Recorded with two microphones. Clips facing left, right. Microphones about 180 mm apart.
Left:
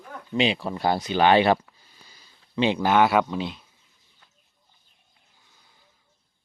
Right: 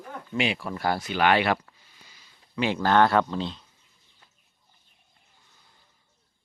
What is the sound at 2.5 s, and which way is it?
Speech, 20° left (ahead or behind).